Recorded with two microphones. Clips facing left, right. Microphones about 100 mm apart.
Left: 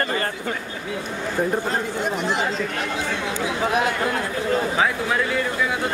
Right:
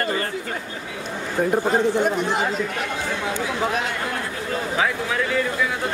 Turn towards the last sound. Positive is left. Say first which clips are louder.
# left 1 dB
turn(degrees=5)  # may be behind; listen again after turning